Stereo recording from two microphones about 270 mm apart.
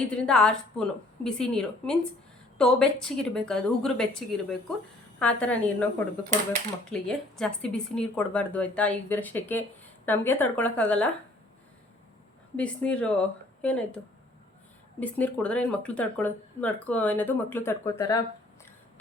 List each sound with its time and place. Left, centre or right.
0.1 s speech: centre
6.9 s speech: centre
12.5 s speech: centre
15.0 s speech: centre